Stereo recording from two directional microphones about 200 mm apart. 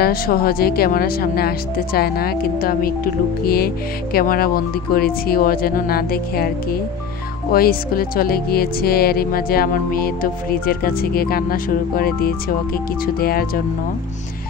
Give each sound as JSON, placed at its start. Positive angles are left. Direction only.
{"t": 0.0, "sound": "speech", "side_deg": 50}